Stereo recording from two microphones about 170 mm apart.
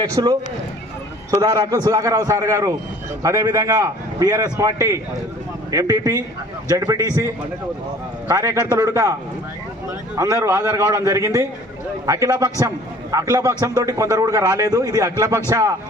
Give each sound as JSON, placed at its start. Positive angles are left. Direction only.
{"t": 0.1, "sound": "a man's voice", "side_deg": -25}
{"t": 8.3, "sound": "a man's voice", "side_deg": -20}
{"t": 10.2, "sound": "a man's voice", "side_deg": -20}